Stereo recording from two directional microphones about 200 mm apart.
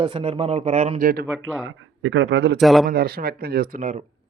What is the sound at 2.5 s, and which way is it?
Speech, centre (ahead or behind).